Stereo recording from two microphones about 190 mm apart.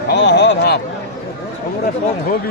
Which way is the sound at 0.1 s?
60° left (ahead or behind).